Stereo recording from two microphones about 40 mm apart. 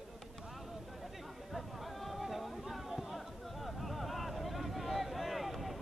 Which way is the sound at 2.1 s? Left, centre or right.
Centre.